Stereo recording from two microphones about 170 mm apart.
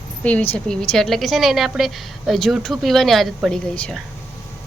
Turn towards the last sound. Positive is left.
turn(degrees=5)  # may be behind; listen again after turning